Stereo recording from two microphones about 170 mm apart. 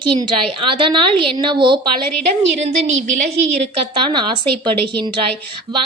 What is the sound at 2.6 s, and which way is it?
Speech, 40° right (ahead or behind).